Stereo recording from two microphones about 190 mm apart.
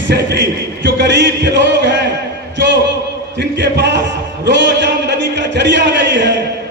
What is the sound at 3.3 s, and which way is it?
Speech, 65° right (ahead or behind).